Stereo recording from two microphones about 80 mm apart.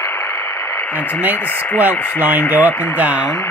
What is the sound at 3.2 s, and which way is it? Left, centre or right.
Speech, left.